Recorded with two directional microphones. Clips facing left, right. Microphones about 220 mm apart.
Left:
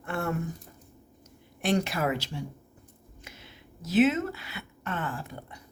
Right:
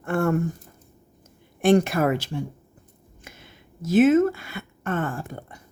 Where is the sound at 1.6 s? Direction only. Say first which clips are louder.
Right 8 dB; 50° right (ahead or behind).